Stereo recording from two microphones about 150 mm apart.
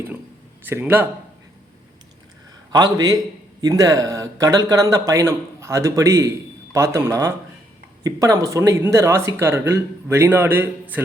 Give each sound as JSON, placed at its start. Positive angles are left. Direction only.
{"t": 0.6, "sound": "speech", "side_deg": -15}
{"t": 2.7, "sound": "speech", "side_deg": -25}